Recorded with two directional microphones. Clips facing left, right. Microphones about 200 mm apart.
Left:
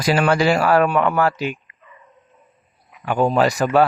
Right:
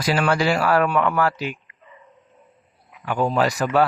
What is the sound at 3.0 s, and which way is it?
Speech, 20° left (ahead or behind).